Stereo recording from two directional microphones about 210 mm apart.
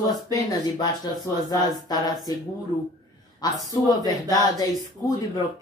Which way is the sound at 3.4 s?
20° left (ahead or behind).